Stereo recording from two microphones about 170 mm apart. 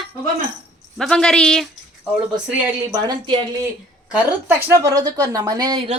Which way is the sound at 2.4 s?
10° right (ahead or behind).